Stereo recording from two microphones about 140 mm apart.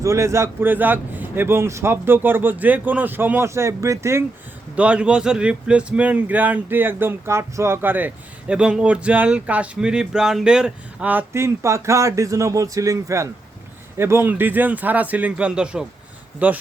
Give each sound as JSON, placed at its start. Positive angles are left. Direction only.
{"t": 0.0, "sound": "speech", "side_deg": -20}
{"t": 4.7, "sound": "speech", "side_deg": -10}